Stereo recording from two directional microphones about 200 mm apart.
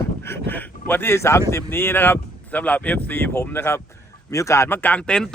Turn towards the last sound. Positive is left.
turn(degrees=5)  # may be behind; listen again after turning